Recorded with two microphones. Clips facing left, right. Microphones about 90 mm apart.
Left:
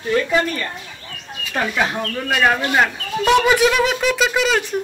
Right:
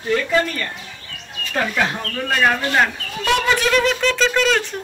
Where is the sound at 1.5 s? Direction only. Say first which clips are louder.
Left 1 dB; 10° left (ahead or behind).